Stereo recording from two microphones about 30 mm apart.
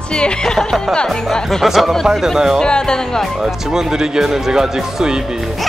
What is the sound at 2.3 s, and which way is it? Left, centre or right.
Speech, centre.